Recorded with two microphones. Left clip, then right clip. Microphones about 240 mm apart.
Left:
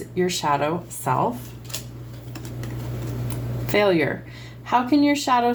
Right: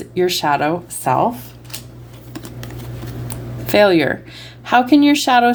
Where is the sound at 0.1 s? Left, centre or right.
Right.